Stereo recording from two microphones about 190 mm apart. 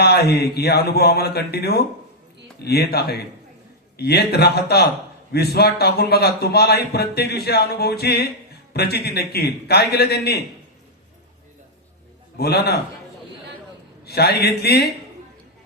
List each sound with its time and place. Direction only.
0.0 s a man's voice: 55° left (ahead or behind)
12.4 s a man's voice: 55° left (ahead or behind)
14.0 s a man's voice: 55° left (ahead or behind)